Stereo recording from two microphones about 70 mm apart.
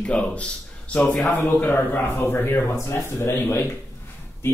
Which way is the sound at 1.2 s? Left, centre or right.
Left.